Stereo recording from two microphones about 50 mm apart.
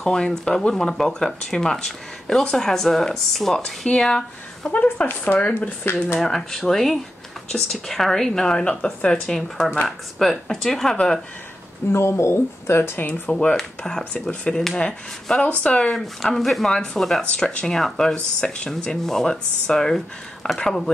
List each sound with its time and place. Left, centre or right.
0.0 s speech: centre
4.6 s speech: left
5.0 s speech: left
6.1 s speech: centre; by 9.2 s left
9.2 s speech: centre
11.9 s speech: left
13.3 s speech: centre
15.9 s speech: centre
16.7 s speech: centre
17.6 s speech: centre
18.1 s speech: centre